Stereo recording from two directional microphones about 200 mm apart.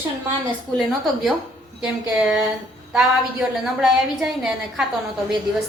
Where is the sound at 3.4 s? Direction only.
Centre (ahead or behind).